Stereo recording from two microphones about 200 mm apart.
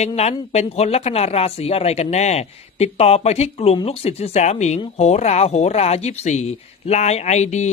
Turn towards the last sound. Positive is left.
turn(degrees=35)  # may be behind; listen again after turning